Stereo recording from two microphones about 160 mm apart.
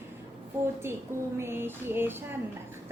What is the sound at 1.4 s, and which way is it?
Speech, 15° right (ahead or behind).